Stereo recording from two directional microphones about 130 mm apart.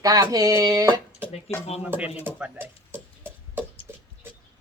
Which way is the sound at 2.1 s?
15° right (ahead or behind).